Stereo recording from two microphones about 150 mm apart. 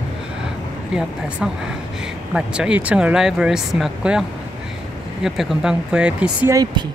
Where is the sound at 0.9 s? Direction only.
5° right (ahead or behind).